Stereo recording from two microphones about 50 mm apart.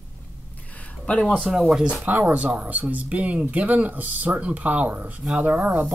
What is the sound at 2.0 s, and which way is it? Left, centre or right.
Speech, right.